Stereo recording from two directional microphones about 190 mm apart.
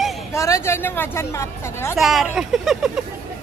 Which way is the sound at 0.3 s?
15° left (ahead or behind).